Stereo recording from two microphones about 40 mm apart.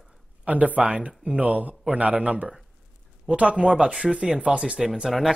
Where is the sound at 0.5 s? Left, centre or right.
Right.